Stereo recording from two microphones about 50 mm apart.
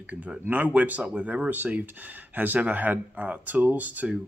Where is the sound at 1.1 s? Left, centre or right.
Right.